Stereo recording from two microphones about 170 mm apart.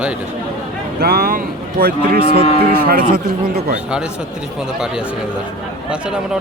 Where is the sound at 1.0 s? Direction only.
65° right (ahead or behind).